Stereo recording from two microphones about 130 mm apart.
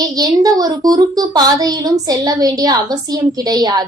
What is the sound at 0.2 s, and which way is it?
A woman's voice, 30° right (ahead or behind).